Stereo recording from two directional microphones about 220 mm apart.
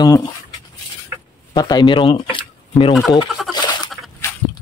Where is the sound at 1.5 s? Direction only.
20° left (ahead or behind).